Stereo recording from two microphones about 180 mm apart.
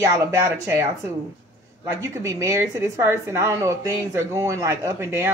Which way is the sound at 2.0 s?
15° right (ahead or behind).